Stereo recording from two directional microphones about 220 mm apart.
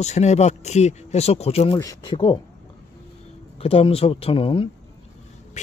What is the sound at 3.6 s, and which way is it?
Speech, 25° left (ahead or behind).